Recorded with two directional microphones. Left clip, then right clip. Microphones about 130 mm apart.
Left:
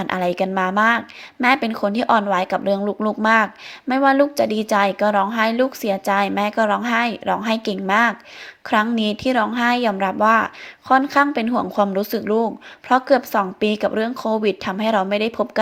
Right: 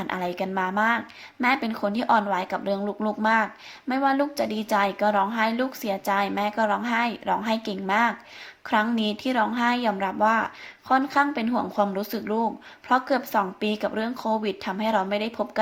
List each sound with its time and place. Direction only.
0.0 s a woman's voice: 35° left (ahead or behind)